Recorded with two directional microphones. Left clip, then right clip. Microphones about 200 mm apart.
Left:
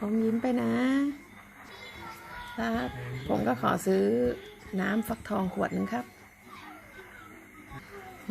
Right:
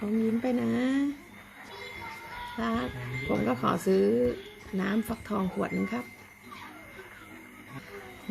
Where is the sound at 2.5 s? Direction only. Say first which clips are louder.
Even; 20° left (ahead or behind).